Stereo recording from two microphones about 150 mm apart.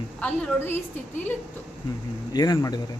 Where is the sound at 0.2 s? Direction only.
10° left (ahead or behind).